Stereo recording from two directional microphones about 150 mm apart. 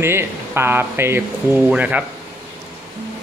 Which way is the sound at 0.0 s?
15° right (ahead or behind).